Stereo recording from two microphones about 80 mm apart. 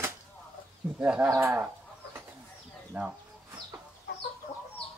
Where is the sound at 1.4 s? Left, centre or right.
Right.